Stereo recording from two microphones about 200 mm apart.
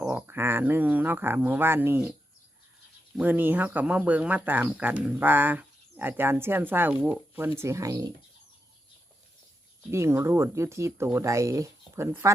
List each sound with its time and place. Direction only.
0.0 s speech: 10° right (ahead or behind)
3.2 s speech: 10° right (ahead or behind)
9.9 s speech: 15° right (ahead or behind)